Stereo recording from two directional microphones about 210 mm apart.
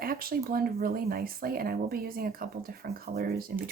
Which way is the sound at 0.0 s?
45° right (ahead or behind).